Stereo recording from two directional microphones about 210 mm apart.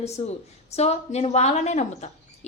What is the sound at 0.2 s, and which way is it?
A woman's voice, 30° left (ahead or behind).